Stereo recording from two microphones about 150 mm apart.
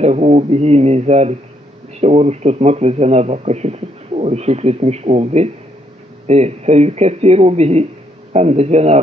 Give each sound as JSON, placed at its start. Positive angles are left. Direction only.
{"t": 0.0, "sound": "a man's voice", "side_deg": -45}